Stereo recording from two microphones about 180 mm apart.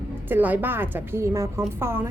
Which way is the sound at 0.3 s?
10° right (ahead or behind).